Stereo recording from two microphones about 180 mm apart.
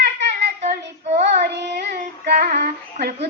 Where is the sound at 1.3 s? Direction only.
70° right (ahead or behind).